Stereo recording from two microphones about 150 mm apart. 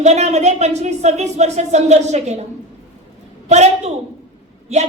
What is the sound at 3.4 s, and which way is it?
Speech, 50° right (ahead or behind).